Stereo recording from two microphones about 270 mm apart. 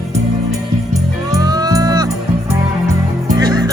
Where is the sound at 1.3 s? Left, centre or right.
Centre.